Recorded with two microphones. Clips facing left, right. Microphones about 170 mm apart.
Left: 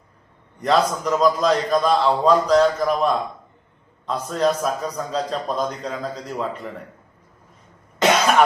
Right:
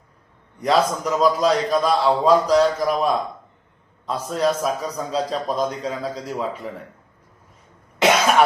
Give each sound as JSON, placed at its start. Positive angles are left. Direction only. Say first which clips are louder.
{"t": 0.6, "sound": "a man's voice", "louder": "even", "side_deg": -10}
{"t": 7.9, "sound": "cough", "louder": "even", "side_deg": -5}